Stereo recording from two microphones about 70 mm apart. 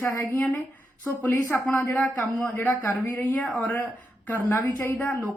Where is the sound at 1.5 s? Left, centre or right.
Left.